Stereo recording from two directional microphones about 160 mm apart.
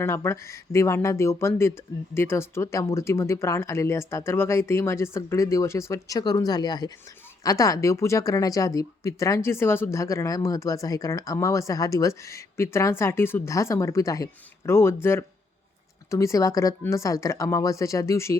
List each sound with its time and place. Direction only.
0.0 s a woman's voice: 15° left (ahead or behind)
16.0 s a woman's voice: 20° left (ahead or behind)